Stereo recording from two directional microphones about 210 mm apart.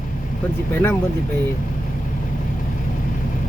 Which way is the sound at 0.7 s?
10° left (ahead or behind).